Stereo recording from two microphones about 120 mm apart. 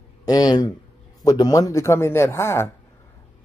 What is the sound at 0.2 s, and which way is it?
Speech, 30° left (ahead or behind).